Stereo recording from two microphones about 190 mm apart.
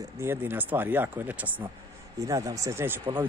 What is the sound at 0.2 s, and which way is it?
Speech, 10° right (ahead or behind).